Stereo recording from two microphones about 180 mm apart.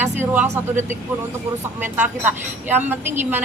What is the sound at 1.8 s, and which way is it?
A woman's voice, 10° right (ahead or behind).